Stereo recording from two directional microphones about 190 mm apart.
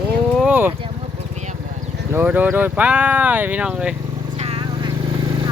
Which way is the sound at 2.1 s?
10° right (ahead or behind).